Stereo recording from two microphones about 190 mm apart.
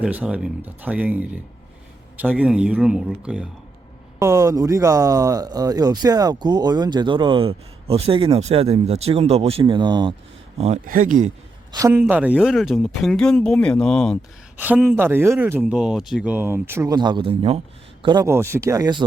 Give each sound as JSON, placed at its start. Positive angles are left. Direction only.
{"t": 0.0, "sound": "speech", "side_deg": -5}
{"t": 4.2, "sound": "speech", "side_deg": -15}
{"t": 10.8, "sound": "speech", "side_deg": -45}
{"t": 11.7, "sound": "speech", "side_deg": -15}
{"t": 14.6, "sound": "speech", "side_deg": -10}